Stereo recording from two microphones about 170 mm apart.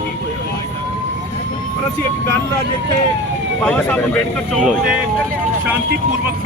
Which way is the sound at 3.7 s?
10° left (ahead or behind).